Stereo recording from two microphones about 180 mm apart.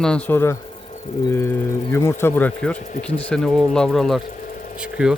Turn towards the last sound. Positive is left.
turn(degrees=-5)  # may be behind; listen again after turning